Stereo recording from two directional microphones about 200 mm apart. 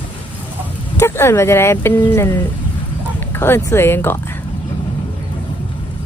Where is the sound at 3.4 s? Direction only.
10° left (ahead or behind).